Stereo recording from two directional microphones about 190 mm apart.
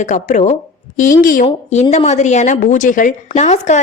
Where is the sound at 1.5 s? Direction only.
35° left (ahead or behind).